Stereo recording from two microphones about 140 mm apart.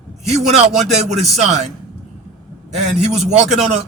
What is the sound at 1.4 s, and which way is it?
Speech, 55° right (ahead or behind).